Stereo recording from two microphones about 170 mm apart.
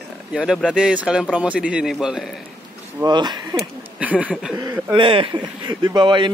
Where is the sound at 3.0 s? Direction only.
25° right (ahead or behind).